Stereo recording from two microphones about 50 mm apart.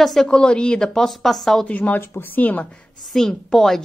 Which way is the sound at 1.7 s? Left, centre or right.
Left.